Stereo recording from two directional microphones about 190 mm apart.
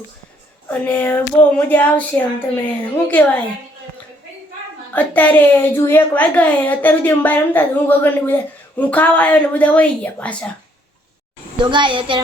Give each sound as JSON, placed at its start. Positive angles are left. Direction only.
{"t": 0.7, "sound": "a child's voice", "side_deg": 10}
{"t": 4.9, "sound": "a child's voice", "side_deg": 10}
{"t": 11.5, "sound": "a child's voice", "side_deg": -25}